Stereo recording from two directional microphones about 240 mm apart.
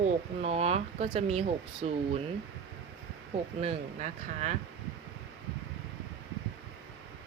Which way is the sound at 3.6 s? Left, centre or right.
Right.